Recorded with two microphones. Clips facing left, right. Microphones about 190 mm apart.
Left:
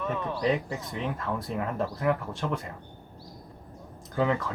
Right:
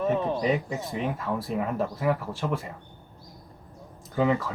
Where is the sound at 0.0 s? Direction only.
30° right (ahead or behind).